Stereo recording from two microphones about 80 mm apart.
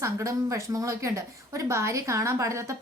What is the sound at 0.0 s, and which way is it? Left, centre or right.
A woman's voice, right.